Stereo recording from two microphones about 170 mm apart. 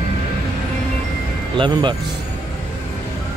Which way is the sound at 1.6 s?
30° right (ahead or behind).